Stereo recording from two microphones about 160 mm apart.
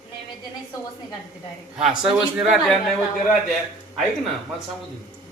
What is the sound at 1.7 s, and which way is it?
Speech, 5° right (ahead or behind).